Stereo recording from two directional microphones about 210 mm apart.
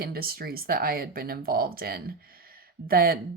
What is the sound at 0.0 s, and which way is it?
Speech, 45° right (ahead or behind).